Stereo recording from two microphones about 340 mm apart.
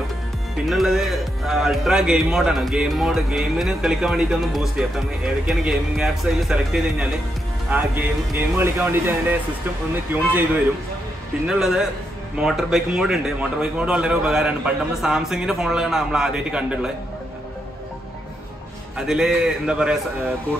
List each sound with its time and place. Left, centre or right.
0.7 s speech: centre
11.4 s speech: centre
18.9 s speech: centre